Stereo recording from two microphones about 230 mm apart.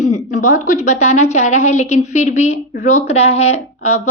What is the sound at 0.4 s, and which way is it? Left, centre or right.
A woman's voice, left.